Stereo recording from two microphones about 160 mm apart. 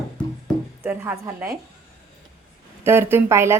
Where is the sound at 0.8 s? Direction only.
15° right (ahead or behind).